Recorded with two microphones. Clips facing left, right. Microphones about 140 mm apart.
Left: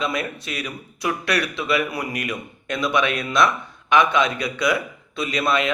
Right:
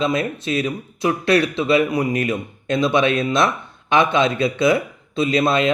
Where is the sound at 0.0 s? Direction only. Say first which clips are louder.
Right 5 dB; 25° right (ahead or behind).